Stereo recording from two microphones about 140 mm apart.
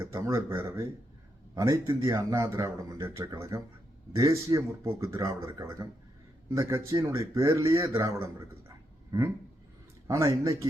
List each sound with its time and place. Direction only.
0.0 s speech: 20° right (ahead or behind)
9.1 s speech: 20° right (ahead or behind)